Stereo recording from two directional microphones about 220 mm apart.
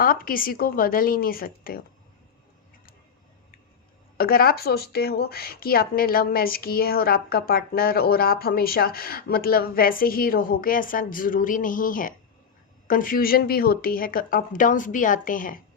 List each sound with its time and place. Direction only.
0.0 s a woman's voice: 40° left (ahead or behind)
4.2 s a woman's voice: 40° left (ahead or behind)